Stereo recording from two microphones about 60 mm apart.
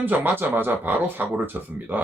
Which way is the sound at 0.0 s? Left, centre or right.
Right.